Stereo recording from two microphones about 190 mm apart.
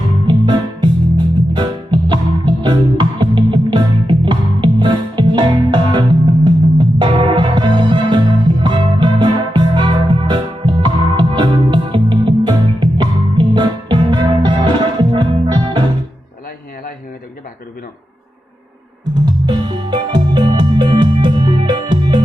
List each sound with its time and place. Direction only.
0.3 s music: 25° right (ahead or behind)
19.2 s music: 25° right (ahead or behind)